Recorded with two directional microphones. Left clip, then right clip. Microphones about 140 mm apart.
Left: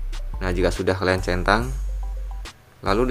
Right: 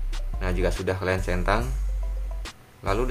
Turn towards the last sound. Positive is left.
turn(degrees=30)  # may be behind; listen again after turning